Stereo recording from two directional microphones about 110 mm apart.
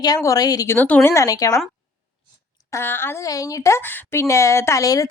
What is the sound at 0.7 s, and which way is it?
Speech, 15° left (ahead or behind).